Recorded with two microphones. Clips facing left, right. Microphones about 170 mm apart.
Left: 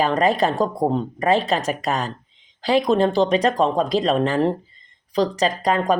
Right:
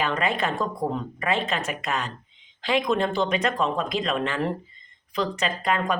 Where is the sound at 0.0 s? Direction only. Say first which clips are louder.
Left 7 dB; 40° left (ahead or behind).